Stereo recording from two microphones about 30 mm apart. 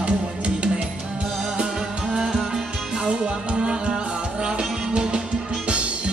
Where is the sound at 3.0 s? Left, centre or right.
Right.